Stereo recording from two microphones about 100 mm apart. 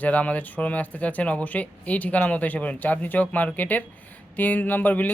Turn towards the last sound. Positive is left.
turn(degrees=15)  # may be behind; listen again after turning